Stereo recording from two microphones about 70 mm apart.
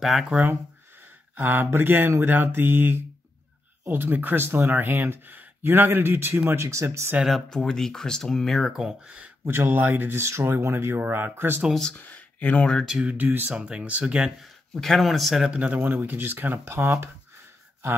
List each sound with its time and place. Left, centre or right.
0.0 s speech: centre
1.3 s speech: right
7.5 s speech: centre
9.4 s speech: right
11.9 s speech: left
13.0 s speech: right
13.5 s speech: centre
14.7 s speech: centre
15.5 s speech: centre
15.8 s speech: right